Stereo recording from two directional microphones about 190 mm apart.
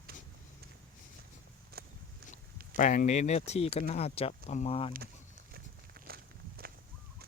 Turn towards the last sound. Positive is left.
turn(degrees=-50)  # may be behind; listen again after turning